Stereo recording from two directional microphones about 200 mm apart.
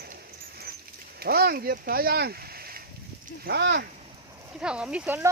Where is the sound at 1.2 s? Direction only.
50° right (ahead or behind).